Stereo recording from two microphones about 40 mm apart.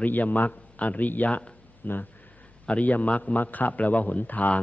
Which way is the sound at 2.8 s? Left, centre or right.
Left.